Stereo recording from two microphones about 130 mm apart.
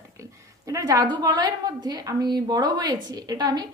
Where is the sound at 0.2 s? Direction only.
25° right (ahead or behind).